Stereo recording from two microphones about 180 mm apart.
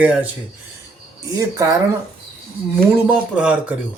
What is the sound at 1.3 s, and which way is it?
Speech, 15° right (ahead or behind).